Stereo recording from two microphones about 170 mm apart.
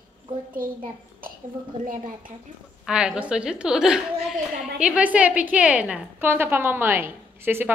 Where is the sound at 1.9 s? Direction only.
50° right (ahead or behind).